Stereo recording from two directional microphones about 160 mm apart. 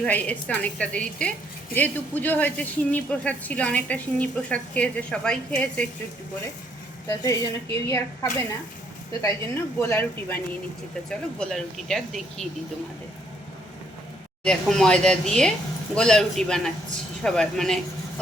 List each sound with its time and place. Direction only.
0.0 s speech: 10° left (ahead or behind)
7.1 s a woman's voice: 20° left (ahead or behind)
9.7 s speech: 15° left (ahead or behind)
14.4 s speech: 5° left (ahead or behind)